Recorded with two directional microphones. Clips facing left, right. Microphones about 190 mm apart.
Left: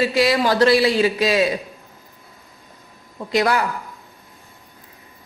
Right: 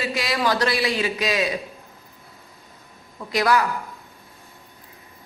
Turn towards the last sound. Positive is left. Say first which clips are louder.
# left 1 dB
turn(degrees=25)  # may be behind; listen again after turning